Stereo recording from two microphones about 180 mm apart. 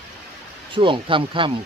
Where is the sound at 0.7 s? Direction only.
30° right (ahead or behind).